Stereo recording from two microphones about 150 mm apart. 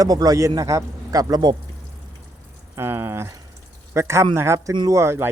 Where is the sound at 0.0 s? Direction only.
25° right (ahead or behind).